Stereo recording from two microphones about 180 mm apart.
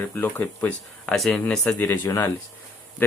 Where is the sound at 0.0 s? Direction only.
10° left (ahead or behind).